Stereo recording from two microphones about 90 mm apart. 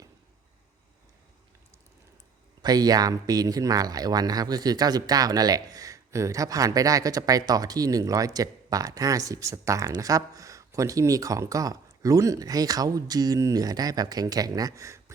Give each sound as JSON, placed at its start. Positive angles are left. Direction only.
{"t": 2.6, "sound": "speech", "side_deg": -45}